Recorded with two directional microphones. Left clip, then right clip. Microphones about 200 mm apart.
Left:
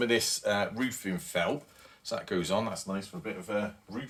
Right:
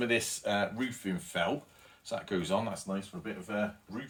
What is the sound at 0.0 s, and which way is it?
Speech, 40° left (ahead or behind).